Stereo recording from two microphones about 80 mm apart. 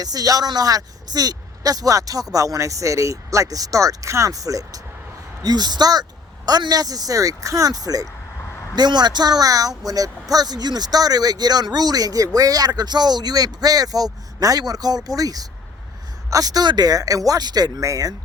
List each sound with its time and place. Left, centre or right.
0.0 s speech: right
5.4 s speech: right
8.7 s speech: right